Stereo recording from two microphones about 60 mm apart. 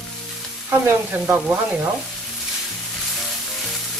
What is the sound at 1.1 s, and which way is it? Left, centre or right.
Sizzle, right.